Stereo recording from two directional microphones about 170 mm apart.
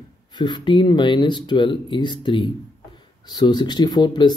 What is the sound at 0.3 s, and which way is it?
Speech, 25° left (ahead or behind).